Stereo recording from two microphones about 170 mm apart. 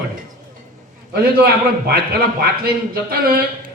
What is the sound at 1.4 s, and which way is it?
A man's voice, 65° right (ahead or behind).